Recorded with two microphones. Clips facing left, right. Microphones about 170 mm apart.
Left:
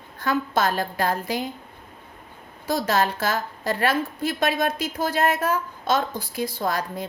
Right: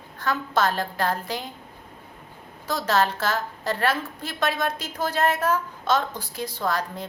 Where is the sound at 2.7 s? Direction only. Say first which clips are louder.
Left 1 dB; 10° left (ahead or behind).